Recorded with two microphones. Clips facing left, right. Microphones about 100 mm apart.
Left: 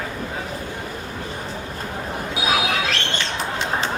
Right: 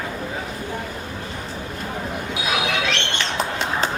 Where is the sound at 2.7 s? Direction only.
40° left (ahead or behind).